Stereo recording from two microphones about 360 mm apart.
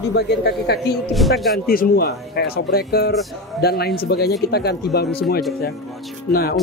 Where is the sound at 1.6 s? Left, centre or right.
Left.